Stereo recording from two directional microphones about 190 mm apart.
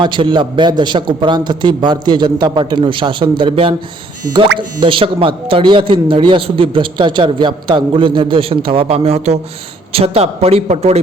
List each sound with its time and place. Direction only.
0.0 s a man's voice: 25° right (ahead or behind)
4.8 s a man's voice: 25° right (ahead or behind)